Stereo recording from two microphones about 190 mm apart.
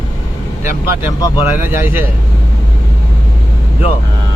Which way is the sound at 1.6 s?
10° right (ahead or behind).